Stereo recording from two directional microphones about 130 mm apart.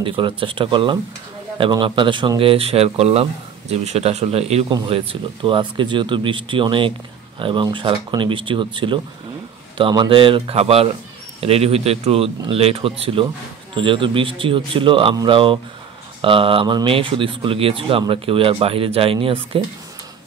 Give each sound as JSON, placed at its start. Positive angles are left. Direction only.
{"t": 0.0, "sound": "speech", "side_deg": -40}